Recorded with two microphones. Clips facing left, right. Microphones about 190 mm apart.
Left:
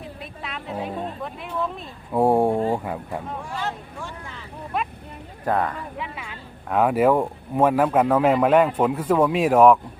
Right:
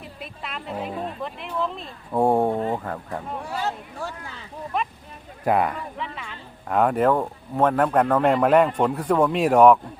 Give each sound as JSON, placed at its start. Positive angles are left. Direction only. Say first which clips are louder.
{"t": 0.2, "sound": "speech", "louder": "even", "side_deg": 0}
{"t": 3.4, "sound": "speech", "louder": "right 2 dB", "side_deg": -35}
{"t": 4.7, "sound": "speech", "louder": "even", "side_deg": 5}
{"t": 5.5, "sound": "speech", "louder": "right 2 dB", "side_deg": -10}
{"t": 6.0, "sound": "a sound", "louder": "even", "side_deg": 10}
{"t": 6.7, "sound": "speech", "louder": "left 1 dB", "side_deg": 0}